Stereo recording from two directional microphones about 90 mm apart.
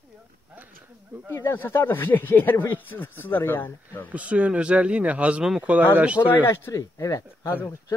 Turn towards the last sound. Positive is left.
turn(degrees=25)  # may be behind; listen again after turning